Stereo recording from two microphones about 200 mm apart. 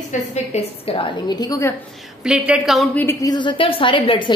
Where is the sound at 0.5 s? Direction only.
25° left (ahead or behind).